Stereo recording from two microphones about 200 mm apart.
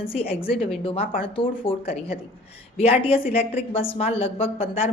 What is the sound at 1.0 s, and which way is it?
Speech, 45° left (ahead or behind).